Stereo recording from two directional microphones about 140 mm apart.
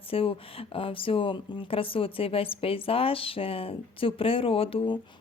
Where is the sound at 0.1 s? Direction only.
40° left (ahead or behind).